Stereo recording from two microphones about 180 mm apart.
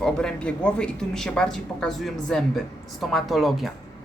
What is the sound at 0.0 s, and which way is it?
A woman's voice, 5° left (ahead or behind).